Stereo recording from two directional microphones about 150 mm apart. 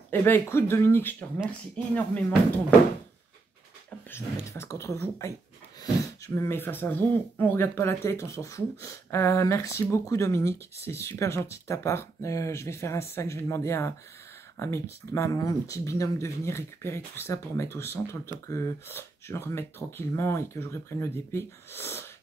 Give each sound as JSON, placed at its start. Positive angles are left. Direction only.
{"t": 0.1, "sound": "speech", "side_deg": 15}
{"t": 4.1, "sound": "speech", "side_deg": 20}